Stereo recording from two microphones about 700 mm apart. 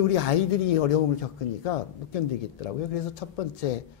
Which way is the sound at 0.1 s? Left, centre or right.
Left.